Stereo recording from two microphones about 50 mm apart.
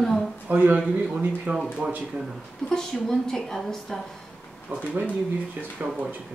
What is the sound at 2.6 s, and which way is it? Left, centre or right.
Speech, centre.